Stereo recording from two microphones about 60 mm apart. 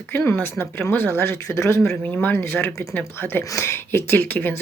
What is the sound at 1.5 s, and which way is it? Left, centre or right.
Speech, left.